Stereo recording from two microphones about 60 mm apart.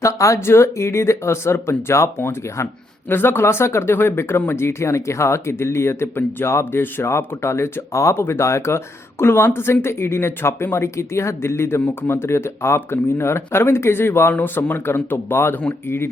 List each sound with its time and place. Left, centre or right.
0.0 s speech: left
0.3 s a man's voice: left